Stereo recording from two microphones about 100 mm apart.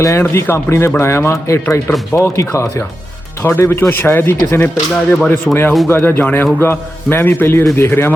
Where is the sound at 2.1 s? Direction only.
30° left (ahead or behind).